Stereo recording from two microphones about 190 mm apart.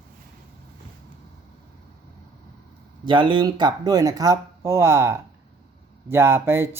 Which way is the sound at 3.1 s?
25° right (ahead or behind).